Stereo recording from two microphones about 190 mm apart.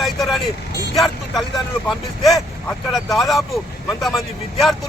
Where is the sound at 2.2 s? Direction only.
Centre (ahead or behind).